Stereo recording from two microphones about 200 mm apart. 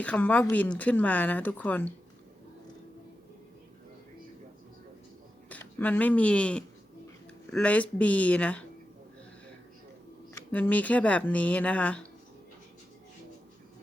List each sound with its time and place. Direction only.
0.0 s speech: 5° left (ahead or behind)
5.5 s speech: 10° left (ahead or behind)
10.3 s speech: 10° left (ahead or behind)